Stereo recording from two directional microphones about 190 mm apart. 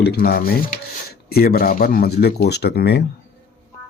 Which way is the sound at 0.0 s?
55° left (ahead or behind).